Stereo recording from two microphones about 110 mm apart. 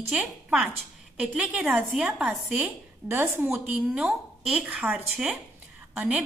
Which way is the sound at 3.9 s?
5° right (ahead or behind).